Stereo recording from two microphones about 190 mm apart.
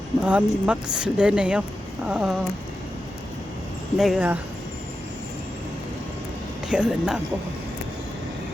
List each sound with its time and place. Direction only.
0.2 s speech: 5° right (ahead or behind)
3.9 s speech: centre (ahead or behind)
6.7 s speech: 5° right (ahead or behind)